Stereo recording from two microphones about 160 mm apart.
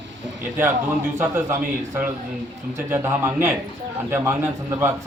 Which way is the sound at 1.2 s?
10° right (ahead or behind).